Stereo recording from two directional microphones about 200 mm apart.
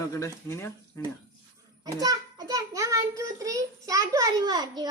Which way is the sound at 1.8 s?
20° right (ahead or behind).